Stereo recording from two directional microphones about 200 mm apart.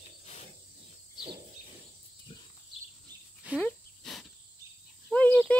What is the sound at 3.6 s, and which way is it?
Cricket, 5° left (ahead or behind).